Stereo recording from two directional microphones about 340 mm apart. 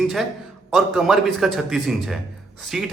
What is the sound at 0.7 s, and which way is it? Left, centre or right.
Speech, centre.